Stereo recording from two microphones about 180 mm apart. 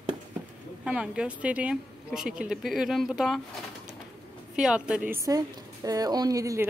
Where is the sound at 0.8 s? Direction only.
5° right (ahead or behind).